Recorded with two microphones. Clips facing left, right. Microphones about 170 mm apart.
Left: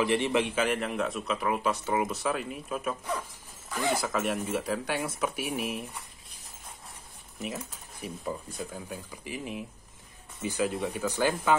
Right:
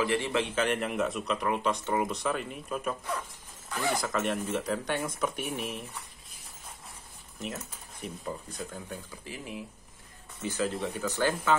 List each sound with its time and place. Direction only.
0.0 s speech: 20° left (ahead or behind)
0.6 s speech: centre (ahead or behind)
7.3 s speech: centre (ahead or behind)